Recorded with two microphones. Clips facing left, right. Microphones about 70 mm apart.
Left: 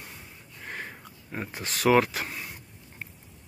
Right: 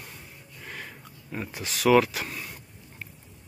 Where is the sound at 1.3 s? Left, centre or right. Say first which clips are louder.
Even; left.